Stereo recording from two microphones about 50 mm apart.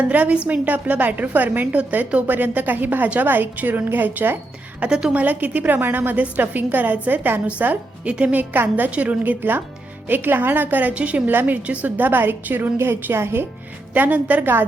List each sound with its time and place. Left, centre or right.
0.0 s a woman's voice: right
4.8 s a woman's voice: centre
5.1 s a woman's voice: right
12.8 s a woman's voice: right
13.9 s a woman's voice: right